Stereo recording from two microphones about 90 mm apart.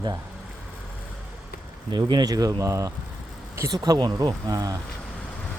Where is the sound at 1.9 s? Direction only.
50° right (ahead or behind).